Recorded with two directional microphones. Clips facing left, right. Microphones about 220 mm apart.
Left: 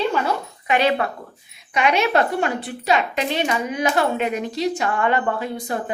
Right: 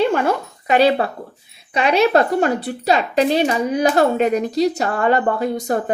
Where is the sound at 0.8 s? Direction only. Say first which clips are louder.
Right 5 dB; 30° right (ahead or behind).